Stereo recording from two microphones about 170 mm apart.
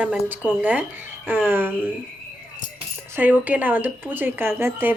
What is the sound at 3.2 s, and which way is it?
Speech, 10° right (ahead or behind).